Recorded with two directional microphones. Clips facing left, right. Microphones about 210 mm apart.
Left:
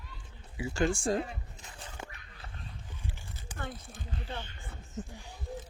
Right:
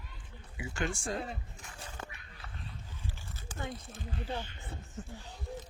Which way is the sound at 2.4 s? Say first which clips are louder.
Left 1 dB; 30° left (ahead or behind).